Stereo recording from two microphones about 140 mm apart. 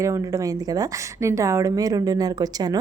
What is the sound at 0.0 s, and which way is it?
A woman's voice, 25° right (ahead or behind).